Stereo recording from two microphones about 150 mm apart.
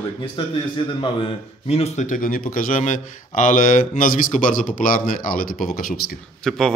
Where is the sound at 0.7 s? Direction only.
35° left (ahead or behind); by 5.7 s 70° left (ahead or behind).